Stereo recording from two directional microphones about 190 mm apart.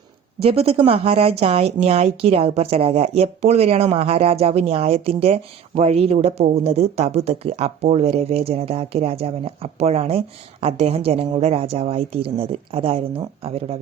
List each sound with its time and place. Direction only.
0.4 s speech: 30° right (ahead or behind)